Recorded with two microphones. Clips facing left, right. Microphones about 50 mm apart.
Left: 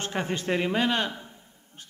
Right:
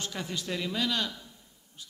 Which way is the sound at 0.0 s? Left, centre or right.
Left.